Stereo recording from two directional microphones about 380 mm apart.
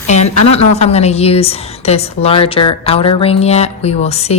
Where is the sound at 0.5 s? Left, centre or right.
Centre.